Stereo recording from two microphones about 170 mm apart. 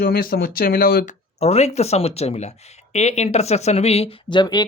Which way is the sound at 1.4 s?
40° left (ahead or behind).